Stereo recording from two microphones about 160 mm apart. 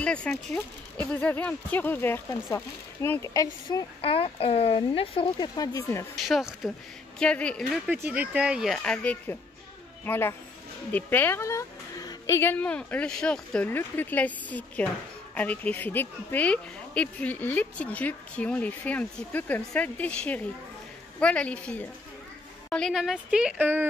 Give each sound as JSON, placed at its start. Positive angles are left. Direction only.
{"t": 0.0, "sound": "speech", "side_deg": 5}
{"t": 4.0, "sound": "speech", "side_deg": 35}
{"t": 6.2, "sound": "speech", "side_deg": 0}
{"t": 7.8, "sound": "speech", "side_deg": -10}